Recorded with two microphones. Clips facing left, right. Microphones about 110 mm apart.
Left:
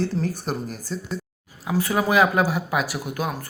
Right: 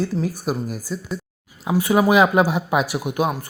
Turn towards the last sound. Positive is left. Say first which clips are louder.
# right 5 dB
turn(degrees=-20)  # may be behind; listen again after turning